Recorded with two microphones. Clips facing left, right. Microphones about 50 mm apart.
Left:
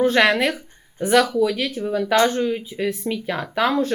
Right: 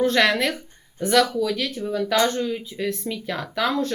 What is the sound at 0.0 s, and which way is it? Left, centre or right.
Speech, centre.